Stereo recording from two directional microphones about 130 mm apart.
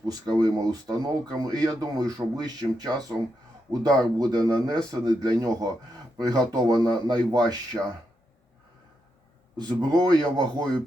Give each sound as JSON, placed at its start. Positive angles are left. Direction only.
{"t": 0.0, "sound": "speech", "side_deg": -30}
{"t": 9.6, "sound": "speech", "side_deg": -35}